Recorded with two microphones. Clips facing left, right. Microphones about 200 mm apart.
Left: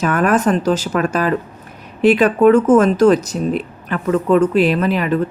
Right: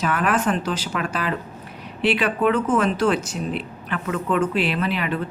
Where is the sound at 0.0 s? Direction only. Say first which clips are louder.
Left 6 dB; 45° left (ahead or behind).